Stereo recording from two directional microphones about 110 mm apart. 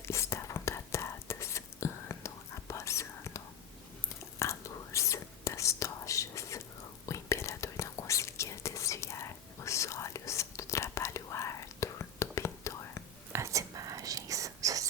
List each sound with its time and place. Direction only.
0.0 s whispering: 25° left (ahead or behind)
13.3 s whispering: 30° right (ahead or behind)